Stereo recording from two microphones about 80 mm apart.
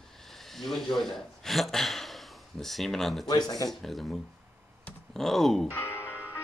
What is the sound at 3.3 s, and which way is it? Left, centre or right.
Speech, left.